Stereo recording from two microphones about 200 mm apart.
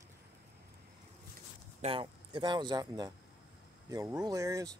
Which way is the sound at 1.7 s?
30° right (ahead or behind).